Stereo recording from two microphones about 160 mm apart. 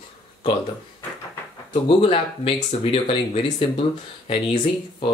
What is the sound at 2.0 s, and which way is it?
Speech, 35° left (ahead or behind).